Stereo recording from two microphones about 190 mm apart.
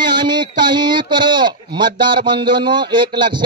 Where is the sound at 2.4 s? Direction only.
25° right (ahead or behind).